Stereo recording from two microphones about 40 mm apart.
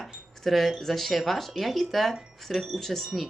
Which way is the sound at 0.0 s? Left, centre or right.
Centre.